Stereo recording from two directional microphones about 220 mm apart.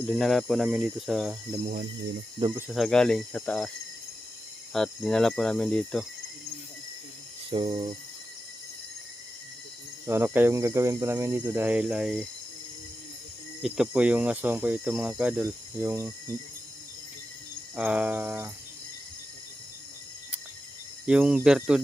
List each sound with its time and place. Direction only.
0.0 s speech: 5° left (ahead or behind)
1.6 s speech: 40° right (ahead or behind)
2.6 s speech: centre (ahead or behind)
4.7 s speech: centre (ahead or behind)
7.5 s a sound: 25° right (ahead or behind)
10.1 s speech: 10° right (ahead or behind)
13.6 s speech: centre (ahead or behind)
17.7 s speech: 5° right (ahead or behind)
21.1 s speech: 5° right (ahead or behind)